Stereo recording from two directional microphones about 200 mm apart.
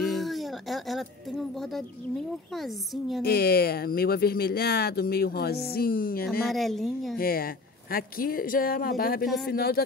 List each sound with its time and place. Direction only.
0.0 s a sound: centre (ahead or behind)
1.5 s speech: centre (ahead or behind)
3.2 s speech: 50° left (ahead or behind)
6.4 s speech: centre (ahead or behind)
7.2 s speech: 45° left (ahead or behind)
9.2 s speech: centre (ahead or behind)
9.5 s speech: 50° left (ahead or behind)